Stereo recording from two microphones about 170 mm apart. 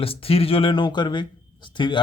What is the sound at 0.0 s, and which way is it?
A man's voice, 35° left (ahead or behind).